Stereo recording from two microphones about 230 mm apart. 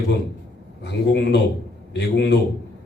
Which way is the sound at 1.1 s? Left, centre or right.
Left.